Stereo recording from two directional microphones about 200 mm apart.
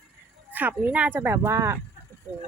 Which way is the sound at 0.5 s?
10° right (ahead or behind).